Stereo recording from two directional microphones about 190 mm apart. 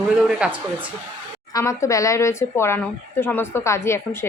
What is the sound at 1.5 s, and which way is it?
Speech, 15° left (ahead or behind).